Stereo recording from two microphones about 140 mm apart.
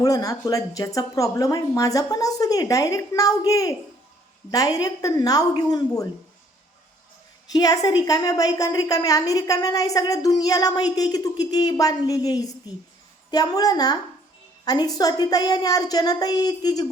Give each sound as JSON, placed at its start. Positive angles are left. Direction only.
{"t": 0.0, "sound": "a woman's voice", "side_deg": 25}
{"t": 7.5, "sound": "a woman's voice", "side_deg": 25}